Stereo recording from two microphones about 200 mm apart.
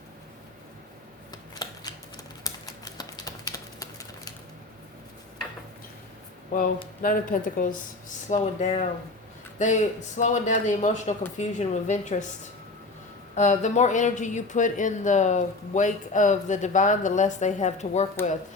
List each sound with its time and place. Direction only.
1.3 s shuffling cards: 20° left (ahead or behind)
2.4 s typewriter: 20° left (ahead or behind)
7.0 s speech: 45° left (ahead or behind)
13.3 s speech: 35° left (ahead or behind)